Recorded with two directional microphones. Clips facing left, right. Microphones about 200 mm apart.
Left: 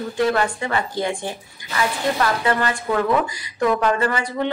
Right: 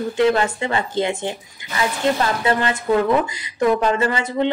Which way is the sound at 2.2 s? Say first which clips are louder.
Right 1 dB; 25° right (ahead or behind).